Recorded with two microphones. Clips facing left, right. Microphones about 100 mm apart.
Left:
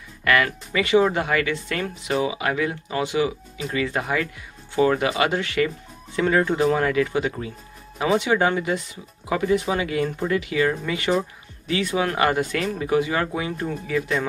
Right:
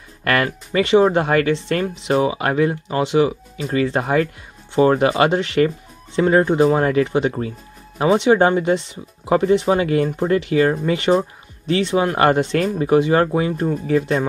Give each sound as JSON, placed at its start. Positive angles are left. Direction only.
{"t": 0.2, "sound": "music", "side_deg": -40}
{"t": 0.8, "sound": "speech", "side_deg": -30}